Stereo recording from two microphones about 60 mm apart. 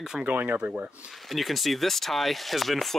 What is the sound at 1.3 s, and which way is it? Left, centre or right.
Speech, centre.